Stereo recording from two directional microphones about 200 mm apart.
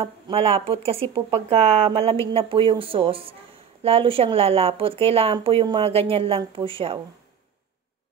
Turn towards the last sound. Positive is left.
turn(degrees=-25)  # may be behind; listen again after turning